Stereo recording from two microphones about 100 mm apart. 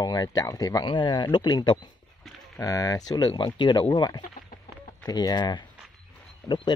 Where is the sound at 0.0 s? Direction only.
40° left (ahead or behind).